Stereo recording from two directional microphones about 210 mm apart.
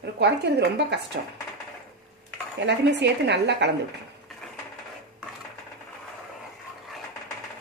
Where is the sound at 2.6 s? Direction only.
55° right (ahead or behind).